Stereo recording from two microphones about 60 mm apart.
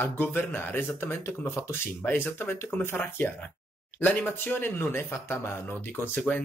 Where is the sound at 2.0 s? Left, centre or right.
Left.